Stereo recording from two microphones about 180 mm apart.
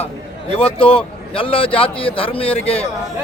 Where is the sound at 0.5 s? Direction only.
30° left (ahead or behind).